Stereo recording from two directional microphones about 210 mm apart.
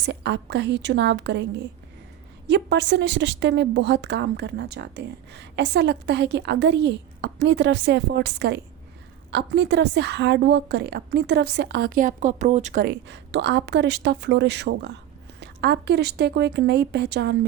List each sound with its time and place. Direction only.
0.0 s a woman's voice: 55° right (ahead or behind); by 12.9 s 35° right (ahead or behind)
12.9 s a woman's voice: 55° right (ahead or behind)